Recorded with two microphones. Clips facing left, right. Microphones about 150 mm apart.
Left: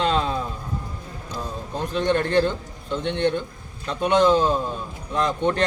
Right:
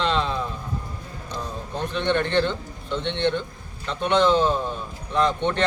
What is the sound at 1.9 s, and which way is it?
A man's voice, 40° left (ahead or behind).